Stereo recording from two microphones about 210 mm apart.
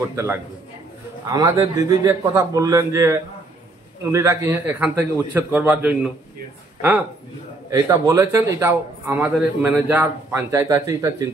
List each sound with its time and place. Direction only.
0.1 s a man's voice: 15° right (ahead or behind)